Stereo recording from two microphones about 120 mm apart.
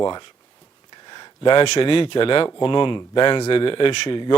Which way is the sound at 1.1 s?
45° left (ahead or behind).